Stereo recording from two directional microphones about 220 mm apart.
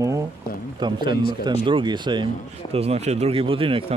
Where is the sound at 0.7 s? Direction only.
20° right (ahead or behind).